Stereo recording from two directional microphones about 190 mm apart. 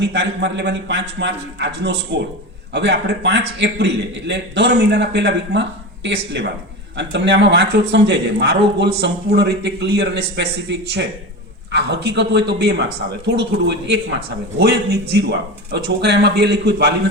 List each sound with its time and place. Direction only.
0.0 s a man's voice: 70° right (ahead or behind)